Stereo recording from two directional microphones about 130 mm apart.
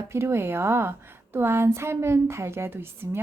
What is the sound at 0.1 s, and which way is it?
A woman's voice, 20° right (ahead or behind).